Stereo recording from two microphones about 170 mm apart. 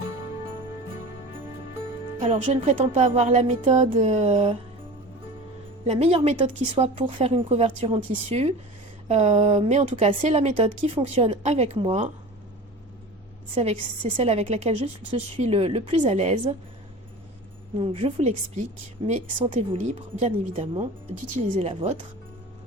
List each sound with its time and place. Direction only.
2.3 s speech: 45° right (ahead or behind)
5.8 s speech: 40° right (ahead or behind)
13.6 s speech: 40° right (ahead or behind)
17.7 s speech: 40° right (ahead or behind)
21.7 s speech: 35° right (ahead or behind)